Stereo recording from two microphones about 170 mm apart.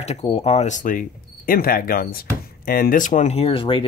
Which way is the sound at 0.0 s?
40° left (ahead or behind).